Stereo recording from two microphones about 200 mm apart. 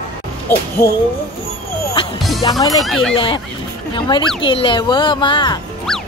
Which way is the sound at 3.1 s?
25° left (ahead or behind).